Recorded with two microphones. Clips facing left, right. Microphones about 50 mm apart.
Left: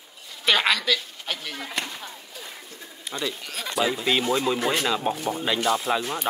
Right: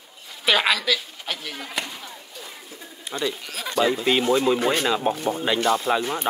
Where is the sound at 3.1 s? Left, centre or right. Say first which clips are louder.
Right 3 dB; centre.